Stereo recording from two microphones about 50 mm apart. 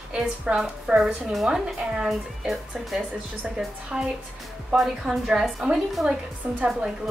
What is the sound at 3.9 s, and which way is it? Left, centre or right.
A woman's voice, centre.